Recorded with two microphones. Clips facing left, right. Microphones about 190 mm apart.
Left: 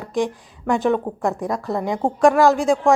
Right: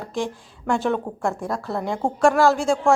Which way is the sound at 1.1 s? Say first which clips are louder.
Left 4 dB; 15° left (ahead or behind).